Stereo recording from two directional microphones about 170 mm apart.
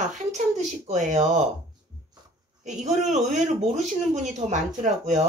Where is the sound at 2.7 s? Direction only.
45° right (ahead or behind).